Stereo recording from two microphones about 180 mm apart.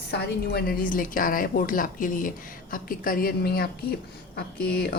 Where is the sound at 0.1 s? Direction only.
65° left (ahead or behind).